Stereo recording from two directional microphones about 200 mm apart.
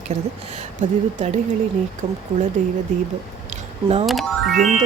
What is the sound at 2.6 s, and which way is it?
Speech, 40° right (ahead or behind).